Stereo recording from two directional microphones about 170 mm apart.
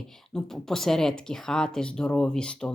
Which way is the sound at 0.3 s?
Centre (ahead or behind).